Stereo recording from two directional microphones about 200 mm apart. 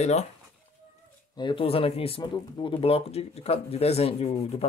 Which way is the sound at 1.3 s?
25° left (ahead or behind).